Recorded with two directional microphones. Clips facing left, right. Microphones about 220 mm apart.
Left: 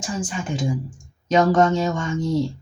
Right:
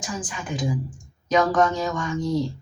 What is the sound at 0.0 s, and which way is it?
Speech, 25° left (ahead or behind).